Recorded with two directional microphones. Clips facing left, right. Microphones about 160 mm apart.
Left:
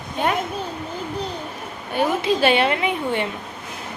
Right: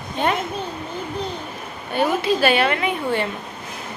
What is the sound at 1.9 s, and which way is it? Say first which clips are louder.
A woman's voice: even; 15° left (ahead or behind).